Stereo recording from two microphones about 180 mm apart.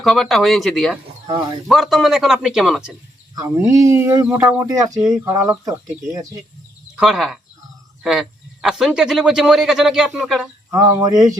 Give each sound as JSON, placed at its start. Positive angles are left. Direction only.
{"t": 0.0, "sound": "speech", "side_deg": 0}
{"t": 3.3, "sound": "speech", "side_deg": -20}
{"t": 6.9, "sound": "speech", "side_deg": -5}
{"t": 10.7, "sound": "speech", "side_deg": -20}